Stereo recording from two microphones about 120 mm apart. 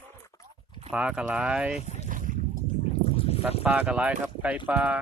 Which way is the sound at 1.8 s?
70° left (ahead or behind).